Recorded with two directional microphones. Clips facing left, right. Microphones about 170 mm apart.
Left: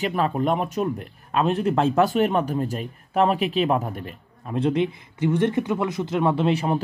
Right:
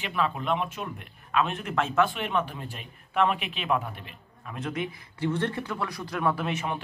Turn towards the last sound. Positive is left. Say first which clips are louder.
# left 8 dB
turn(degrees=35)  # may be behind; listen again after turning